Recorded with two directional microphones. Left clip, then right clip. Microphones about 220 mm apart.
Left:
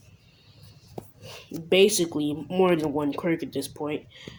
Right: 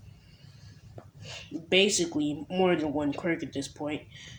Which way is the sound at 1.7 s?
35° left (ahead or behind).